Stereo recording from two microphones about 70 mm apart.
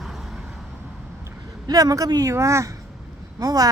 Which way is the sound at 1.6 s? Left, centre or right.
Right.